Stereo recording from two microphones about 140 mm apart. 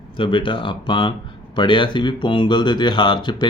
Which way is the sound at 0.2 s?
35° left (ahead or behind).